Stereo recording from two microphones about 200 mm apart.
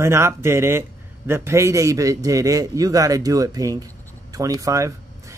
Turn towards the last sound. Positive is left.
turn(degrees=-15)  # may be behind; listen again after turning